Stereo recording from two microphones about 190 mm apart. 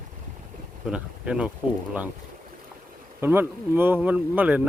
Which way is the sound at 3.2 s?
10° right (ahead or behind).